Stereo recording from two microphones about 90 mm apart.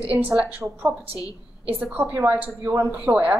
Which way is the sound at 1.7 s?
15° right (ahead or behind).